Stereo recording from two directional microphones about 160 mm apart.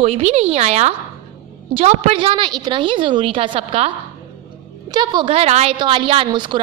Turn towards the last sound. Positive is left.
turn(degrees=-30)  # may be behind; listen again after turning